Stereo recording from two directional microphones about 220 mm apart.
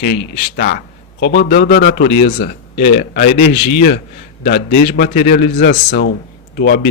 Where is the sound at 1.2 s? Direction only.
55° left (ahead or behind).